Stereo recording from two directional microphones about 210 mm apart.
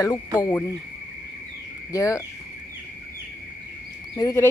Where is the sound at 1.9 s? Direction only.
15° left (ahead or behind).